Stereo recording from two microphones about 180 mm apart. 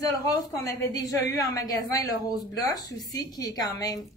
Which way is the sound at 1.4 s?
20° left (ahead or behind).